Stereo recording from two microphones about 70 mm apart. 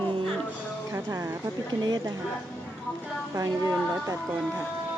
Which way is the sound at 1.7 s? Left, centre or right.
Right.